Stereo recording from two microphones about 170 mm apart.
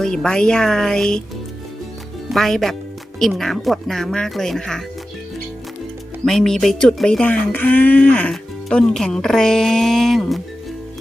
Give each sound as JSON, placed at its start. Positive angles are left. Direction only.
{"t": 0.0, "sound": "speech", "side_deg": 5}
{"t": 2.3, "sound": "speech", "side_deg": 0}
{"t": 6.2, "sound": "speech", "side_deg": 0}